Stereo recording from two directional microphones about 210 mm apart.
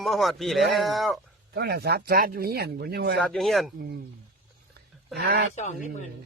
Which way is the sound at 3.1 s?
5° left (ahead or behind).